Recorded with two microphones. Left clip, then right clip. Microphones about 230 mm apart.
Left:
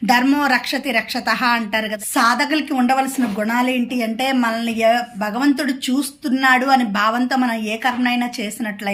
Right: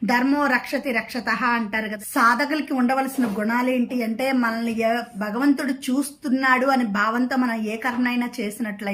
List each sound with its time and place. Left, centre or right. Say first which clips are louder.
0.1 s a woman's voice: left 5 dB; centre